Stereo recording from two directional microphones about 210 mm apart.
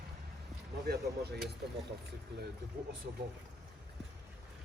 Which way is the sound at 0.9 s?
50° right (ahead or behind).